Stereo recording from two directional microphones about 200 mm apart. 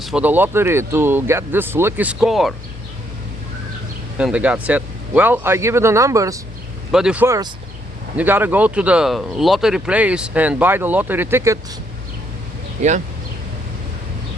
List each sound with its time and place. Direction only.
0.0 s speech: 5° right (ahead or behind)
4.2 s speech: 5° right (ahead or behind)
6.9 s speech: 5° right (ahead or behind)
12.8 s speech: 35° right (ahead or behind)